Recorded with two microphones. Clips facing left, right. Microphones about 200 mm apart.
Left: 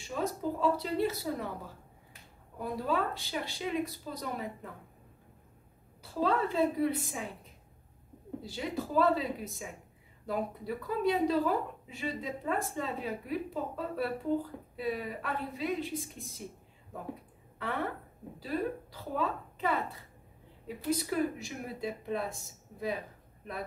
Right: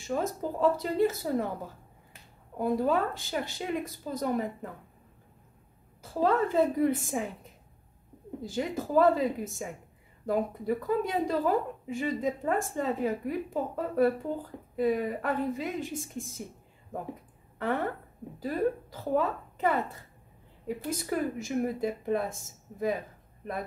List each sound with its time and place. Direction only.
0.1 s a woman's voice: 50° right (ahead or behind)
2.6 s a woman's voice: 50° right (ahead or behind)
6.2 s a woman's voice: 45° right (ahead or behind)
8.4 s a woman's voice: 45° right (ahead or behind)
18.4 s a woman's voice: 50° right (ahead or behind)